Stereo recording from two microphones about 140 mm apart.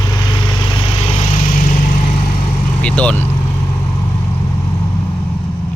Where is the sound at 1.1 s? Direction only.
60° left (ahead or behind).